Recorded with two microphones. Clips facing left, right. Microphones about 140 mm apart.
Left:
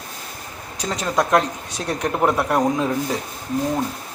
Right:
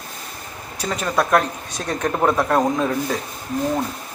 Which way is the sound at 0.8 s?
15° left (ahead or behind).